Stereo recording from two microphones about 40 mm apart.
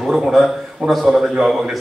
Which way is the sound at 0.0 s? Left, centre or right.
Centre.